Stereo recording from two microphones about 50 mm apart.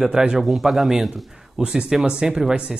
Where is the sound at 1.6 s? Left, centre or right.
Centre.